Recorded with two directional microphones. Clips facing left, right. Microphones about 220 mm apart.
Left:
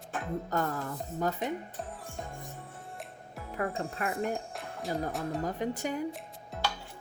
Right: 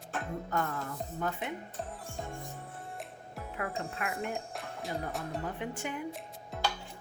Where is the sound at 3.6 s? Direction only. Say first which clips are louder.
Left 4 dB; 40° left (ahead or behind).